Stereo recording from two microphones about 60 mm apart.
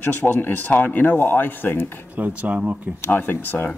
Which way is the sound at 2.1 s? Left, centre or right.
Right.